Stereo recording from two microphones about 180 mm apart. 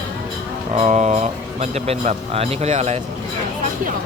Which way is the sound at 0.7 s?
35° right (ahead or behind).